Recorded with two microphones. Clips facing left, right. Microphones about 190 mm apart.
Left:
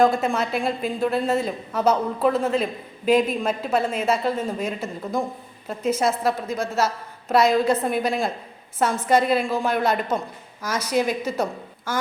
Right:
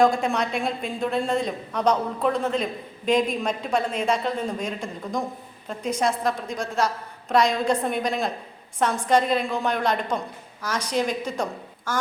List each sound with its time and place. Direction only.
0.0 s a woman's voice: centre (ahead or behind)